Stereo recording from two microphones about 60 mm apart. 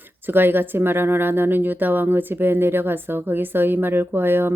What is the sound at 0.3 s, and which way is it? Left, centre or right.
A woman's voice, right.